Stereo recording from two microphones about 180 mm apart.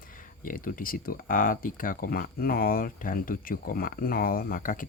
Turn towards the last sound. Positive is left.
turn(degrees=50)  # may be behind; listen again after turning